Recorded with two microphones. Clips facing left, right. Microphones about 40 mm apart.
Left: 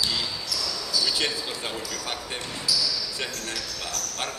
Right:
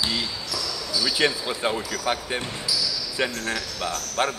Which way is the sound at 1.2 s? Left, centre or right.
Right.